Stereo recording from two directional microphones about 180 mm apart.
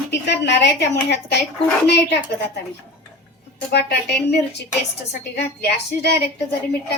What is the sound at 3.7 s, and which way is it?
A woman's voice, 65° left (ahead or behind).